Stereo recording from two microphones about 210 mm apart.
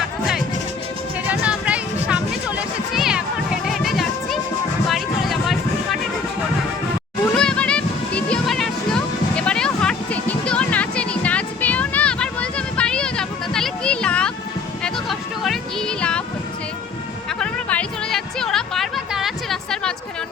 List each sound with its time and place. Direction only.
1.3 s music: 5° right (ahead or behind)
7.3 s music: 5° left (ahead or behind)
15.4 s music: 5° left (ahead or behind)
17.4 s music: 5° left (ahead or behind)